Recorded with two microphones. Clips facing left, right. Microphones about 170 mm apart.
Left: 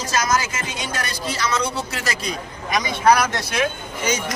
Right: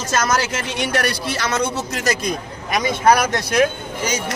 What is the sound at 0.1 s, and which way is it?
Speech, 60° right (ahead or behind).